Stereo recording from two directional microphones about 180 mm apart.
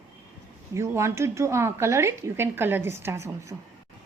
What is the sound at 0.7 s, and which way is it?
A woman's voice, 15° right (ahead or behind).